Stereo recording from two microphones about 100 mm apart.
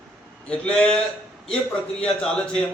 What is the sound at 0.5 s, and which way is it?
Speech, 10° left (ahead or behind).